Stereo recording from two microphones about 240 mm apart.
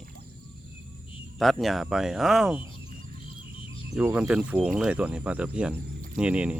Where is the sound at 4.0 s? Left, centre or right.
Centre.